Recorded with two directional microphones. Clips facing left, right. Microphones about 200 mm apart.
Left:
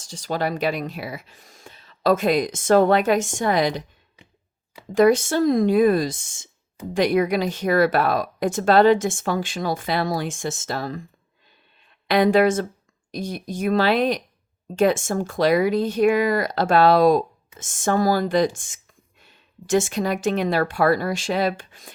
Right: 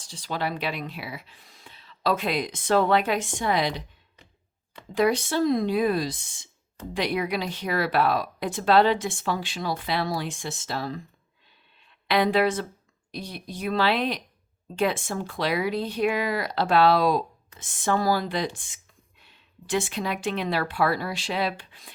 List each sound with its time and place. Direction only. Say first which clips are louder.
0.0 s speech: left 5 dB; 45° left (ahead or behind)
4.9 s speech: left 7 dB; 45° left (ahead or behind)
12.0 s speech: left 5 dB; 45° left (ahead or behind)